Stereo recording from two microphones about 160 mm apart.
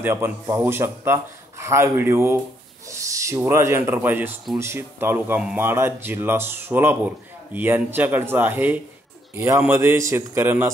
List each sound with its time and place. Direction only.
0.0 s speech: 15° right (ahead or behind)